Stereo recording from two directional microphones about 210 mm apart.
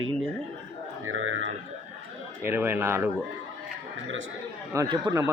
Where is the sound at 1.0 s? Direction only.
70° right (ahead or behind).